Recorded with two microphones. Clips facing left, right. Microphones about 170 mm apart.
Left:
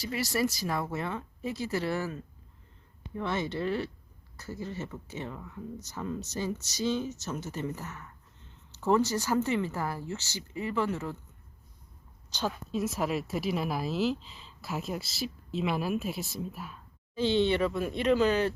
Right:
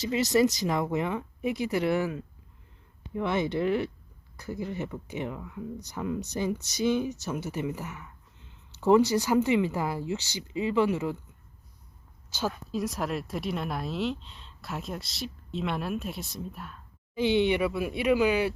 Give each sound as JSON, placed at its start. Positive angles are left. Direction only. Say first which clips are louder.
{"t": 0.0, "sound": "speech", "louder": "right 6 dB", "side_deg": -20}
{"t": 12.3, "sound": "speech", "louder": "right 1 dB", "side_deg": -5}
{"t": 17.2, "sound": "speech", "louder": "right 2 dB", "side_deg": -15}